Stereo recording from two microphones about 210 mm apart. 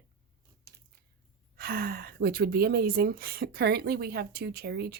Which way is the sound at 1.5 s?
45° right (ahead or behind).